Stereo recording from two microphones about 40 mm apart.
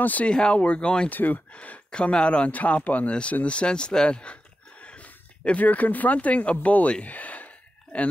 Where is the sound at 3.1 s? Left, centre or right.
Left.